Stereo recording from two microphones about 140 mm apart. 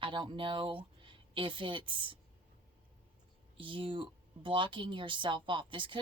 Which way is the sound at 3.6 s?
35° right (ahead or behind).